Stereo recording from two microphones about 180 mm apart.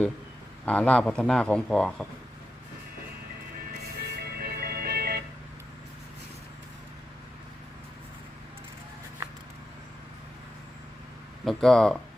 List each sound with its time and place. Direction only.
0.6 s speech: 5° left (ahead or behind)
3.8 s music: 65° right (ahead or behind)
11.4 s speech: centre (ahead or behind)